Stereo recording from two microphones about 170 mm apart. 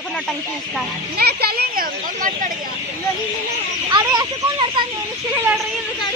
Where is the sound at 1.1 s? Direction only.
70° right (ahead or behind); by 2.7 s 50° right (ahead or behind).